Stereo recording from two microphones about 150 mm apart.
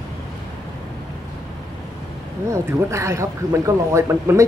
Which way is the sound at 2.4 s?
20° right (ahead or behind).